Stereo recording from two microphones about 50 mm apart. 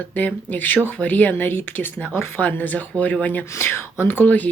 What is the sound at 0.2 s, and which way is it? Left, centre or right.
Speech, left.